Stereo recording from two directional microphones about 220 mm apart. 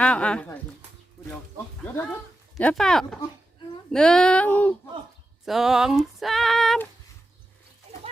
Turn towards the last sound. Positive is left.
turn(degrees=0)  # may be behind; listen again after turning